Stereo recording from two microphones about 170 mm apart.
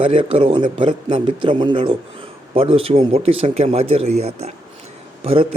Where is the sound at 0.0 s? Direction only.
35° right (ahead or behind).